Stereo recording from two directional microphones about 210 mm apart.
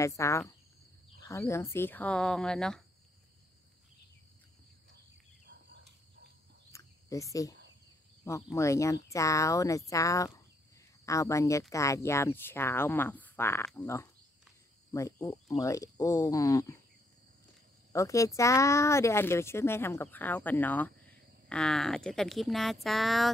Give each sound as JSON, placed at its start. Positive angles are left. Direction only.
{"t": 0.0, "sound": "speech", "side_deg": 15}
{"t": 1.5, "sound": "speech", "side_deg": 15}
{"t": 6.7, "sound": "cricket", "side_deg": 15}
{"t": 8.2, "sound": "speech", "side_deg": 15}
{"t": 17.9, "sound": "speech", "side_deg": 15}